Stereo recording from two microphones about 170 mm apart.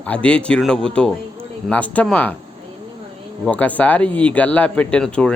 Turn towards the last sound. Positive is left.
turn(degrees=5)  # may be behind; listen again after turning